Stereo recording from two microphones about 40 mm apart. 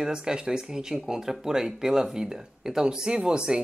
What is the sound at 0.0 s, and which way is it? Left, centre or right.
Speech, right.